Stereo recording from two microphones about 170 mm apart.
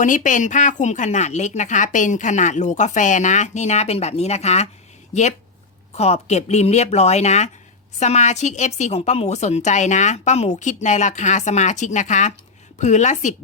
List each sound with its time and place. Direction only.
0.0 s speech: 50° left (ahead or behind)
5.9 s speech: 40° left (ahead or behind)